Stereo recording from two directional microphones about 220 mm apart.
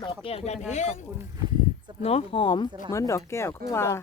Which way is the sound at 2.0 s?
25° left (ahead or behind).